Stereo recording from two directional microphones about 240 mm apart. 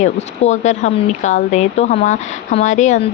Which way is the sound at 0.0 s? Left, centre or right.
Left.